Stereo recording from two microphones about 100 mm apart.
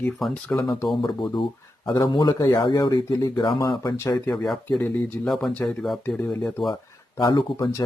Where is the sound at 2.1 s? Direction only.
55° left (ahead or behind).